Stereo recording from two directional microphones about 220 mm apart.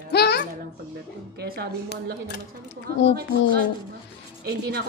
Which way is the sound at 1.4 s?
45° right (ahead or behind).